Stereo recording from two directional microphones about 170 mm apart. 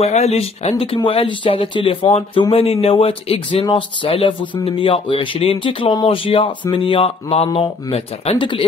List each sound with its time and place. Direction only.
0.0 s speech: 40° left (ahead or behind)